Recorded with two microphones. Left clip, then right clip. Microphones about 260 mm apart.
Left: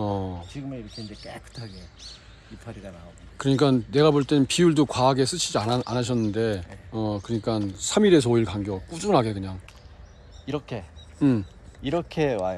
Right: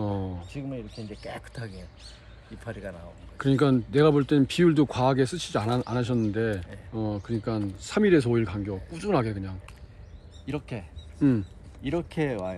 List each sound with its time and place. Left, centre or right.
0.0 s speech: centre
11.1 s speech: centre
11.8 s speech: left